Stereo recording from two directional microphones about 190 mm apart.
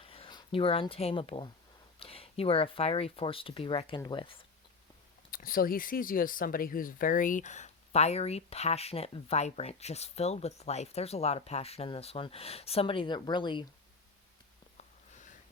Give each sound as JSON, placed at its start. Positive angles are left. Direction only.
{"t": 0.0, "sound": "speech", "side_deg": 30}
{"t": 5.3, "sound": "speech", "side_deg": 50}